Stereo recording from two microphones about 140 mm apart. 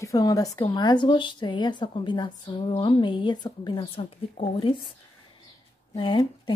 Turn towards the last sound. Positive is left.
turn(degrees=30)  # may be behind; listen again after turning